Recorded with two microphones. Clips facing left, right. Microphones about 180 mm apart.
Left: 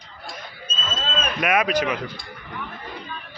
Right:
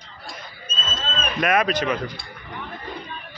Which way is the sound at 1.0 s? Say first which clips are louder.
Even; 10° left (ahead or behind).